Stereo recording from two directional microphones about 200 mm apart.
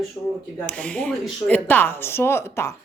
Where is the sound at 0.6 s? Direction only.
5° left (ahead or behind).